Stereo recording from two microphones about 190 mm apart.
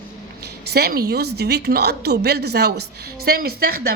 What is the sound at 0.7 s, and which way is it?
A woman's voice, 55° right (ahead or behind).